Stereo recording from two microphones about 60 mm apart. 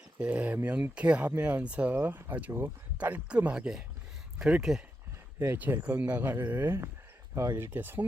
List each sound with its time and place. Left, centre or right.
0.2 s speech: right
1.3 s speech: right
5.8 s speech: right
7.7 s speech: right